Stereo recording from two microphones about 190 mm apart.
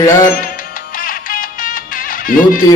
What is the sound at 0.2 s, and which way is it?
Music, 45° left (ahead or behind).